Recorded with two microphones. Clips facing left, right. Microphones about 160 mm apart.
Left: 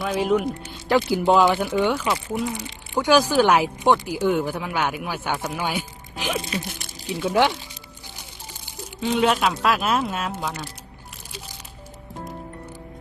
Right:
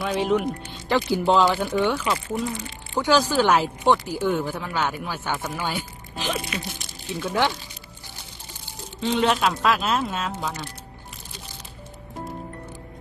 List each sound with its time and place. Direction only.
0.0 s speech: 5° left (ahead or behind)
6.5 s speech: 35° left (ahead or behind)
7.1 s speech: 10° left (ahead or behind)
8.6 s a sound: 5° left (ahead or behind)
9.6 s speech: 5° left (ahead or behind)